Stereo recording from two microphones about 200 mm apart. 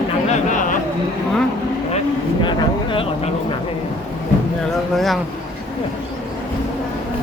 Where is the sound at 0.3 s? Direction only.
40° left (ahead or behind).